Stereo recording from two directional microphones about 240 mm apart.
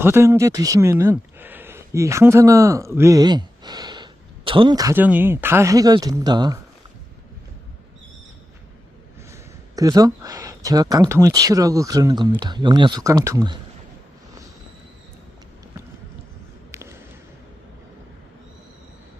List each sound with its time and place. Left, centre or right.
0.0 s speech: centre
9.3 s speech: centre
16.7 s a sound: centre